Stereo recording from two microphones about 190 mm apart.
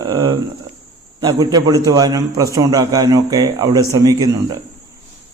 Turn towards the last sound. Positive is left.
turn(degrees=-20)  # may be behind; listen again after turning